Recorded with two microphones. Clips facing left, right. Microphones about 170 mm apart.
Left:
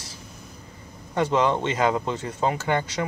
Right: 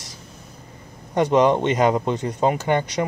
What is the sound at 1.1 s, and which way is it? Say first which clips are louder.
Speech: right 5 dB; 15° right (ahead or behind).